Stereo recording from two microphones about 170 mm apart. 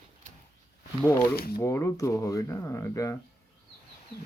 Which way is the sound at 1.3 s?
65° left (ahead or behind).